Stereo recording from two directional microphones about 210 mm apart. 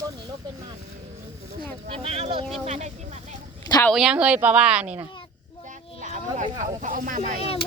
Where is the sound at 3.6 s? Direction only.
20° left (ahead or behind).